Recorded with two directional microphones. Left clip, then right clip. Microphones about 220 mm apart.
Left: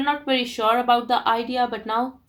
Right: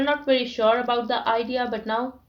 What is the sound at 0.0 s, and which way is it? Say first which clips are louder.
Speech: right 1 dB; 40° left (ahead or behind).